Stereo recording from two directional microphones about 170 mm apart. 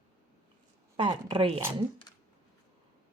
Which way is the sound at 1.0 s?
30° right (ahead or behind).